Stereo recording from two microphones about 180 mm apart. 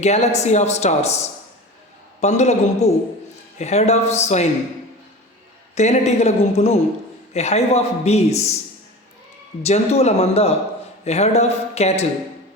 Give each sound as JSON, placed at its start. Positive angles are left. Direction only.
{"t": 0.0, "sound": "speech", "side_deg": 35}
{"t": 5.7, "sound": "speech", "side_deg": 40}
{"t": 9.6, "sound": "speech", "side_deg": 35}